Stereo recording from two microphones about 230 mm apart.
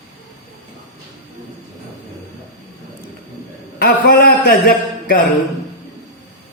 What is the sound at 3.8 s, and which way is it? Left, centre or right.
Speech, left.